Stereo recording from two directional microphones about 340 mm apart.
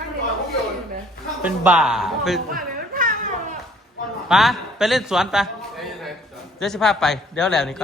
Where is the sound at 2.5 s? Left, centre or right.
Right.